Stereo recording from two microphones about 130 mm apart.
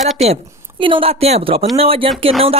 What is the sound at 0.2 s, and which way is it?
Speech, 55° right (ahead or behind).